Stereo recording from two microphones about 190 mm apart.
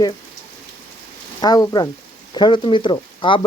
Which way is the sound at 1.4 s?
20° left (ahead or behind).